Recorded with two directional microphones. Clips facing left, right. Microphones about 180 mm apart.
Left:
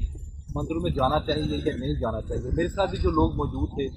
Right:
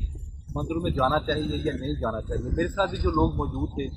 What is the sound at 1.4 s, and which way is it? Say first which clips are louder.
Speech: left 1 dB; 70° left (ahead or behind).